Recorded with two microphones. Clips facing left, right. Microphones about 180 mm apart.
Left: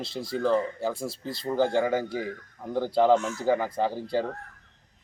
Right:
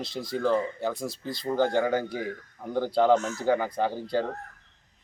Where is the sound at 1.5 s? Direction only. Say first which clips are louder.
Even; centre (ahead or behind).